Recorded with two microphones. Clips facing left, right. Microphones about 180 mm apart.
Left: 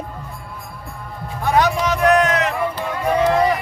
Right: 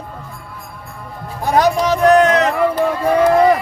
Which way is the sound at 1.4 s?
40° right (ahead or behind).